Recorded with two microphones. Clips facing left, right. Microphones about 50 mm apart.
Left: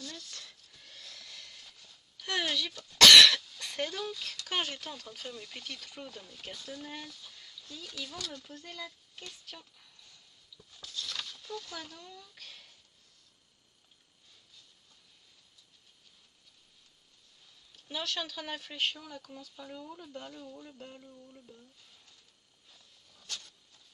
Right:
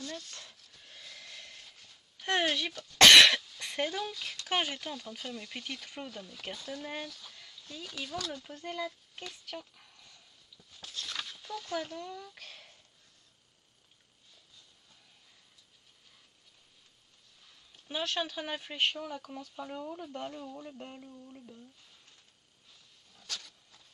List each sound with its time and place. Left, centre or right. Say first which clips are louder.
0.0 s a sound: right 3 dB; right
3.0 s cough: even; right
3.5 s speech: right 2 dB; right
10.8 s a sound: even; right
11.1 s fowl: right 3 dB; centre
11.6 s speech: right 8 dB; right
17.8 s speech: right 3 dB; right
20.6 s speech: right 3 dB; centre